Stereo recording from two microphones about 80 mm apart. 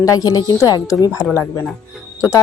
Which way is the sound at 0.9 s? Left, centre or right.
Left.